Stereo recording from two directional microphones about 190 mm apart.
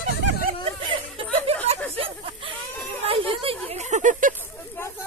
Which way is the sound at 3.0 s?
30° right (ahead or behind).